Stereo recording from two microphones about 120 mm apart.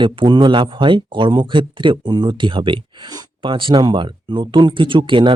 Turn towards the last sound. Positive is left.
turn(degrees=-45)  # may be behind; listen again after turning